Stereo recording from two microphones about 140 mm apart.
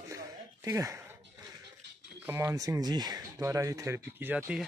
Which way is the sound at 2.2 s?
15° right (ahead or behind).